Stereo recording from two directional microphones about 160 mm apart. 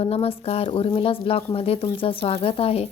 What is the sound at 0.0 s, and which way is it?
Speech, 40° left (ahead or behind).